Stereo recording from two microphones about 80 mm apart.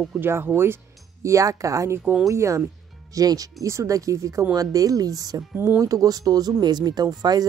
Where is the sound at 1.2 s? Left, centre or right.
Right.